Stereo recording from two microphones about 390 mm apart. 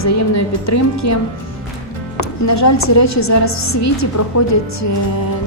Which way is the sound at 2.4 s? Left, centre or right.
Left.